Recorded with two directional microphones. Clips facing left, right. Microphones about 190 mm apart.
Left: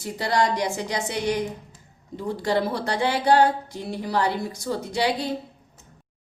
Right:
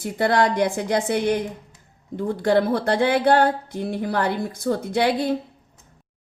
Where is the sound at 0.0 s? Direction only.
55° right (ahead or behind).